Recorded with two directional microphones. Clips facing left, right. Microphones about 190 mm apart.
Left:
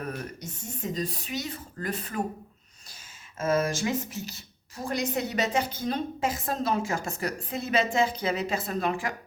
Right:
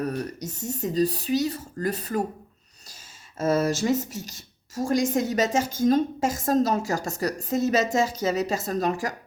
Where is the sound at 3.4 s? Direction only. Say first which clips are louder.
Right 3 dB; 40° right (ahead or behind).